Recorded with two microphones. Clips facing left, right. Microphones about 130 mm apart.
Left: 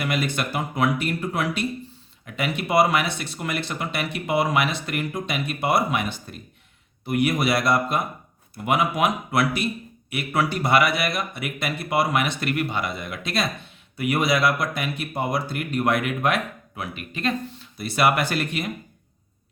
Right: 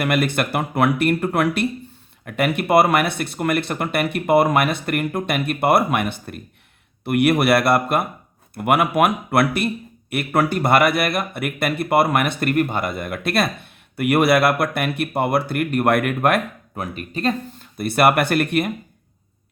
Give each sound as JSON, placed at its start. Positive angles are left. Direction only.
{"t": 0.0, "sound": "speech", "side_deg": -60}
{"t": 17.7, "sound": "speech", "side_deg": -55}